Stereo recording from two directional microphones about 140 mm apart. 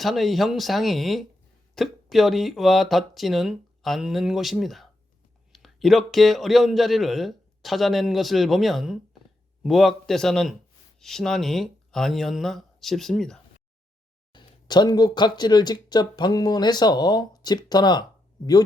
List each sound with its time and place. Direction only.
0.0 s speech: centre (ahead or behind)
14.3 s speech: 30° left (ahead or behind)